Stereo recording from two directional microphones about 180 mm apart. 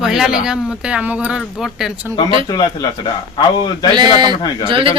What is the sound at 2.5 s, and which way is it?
Speech, 20° left (ahead or behind).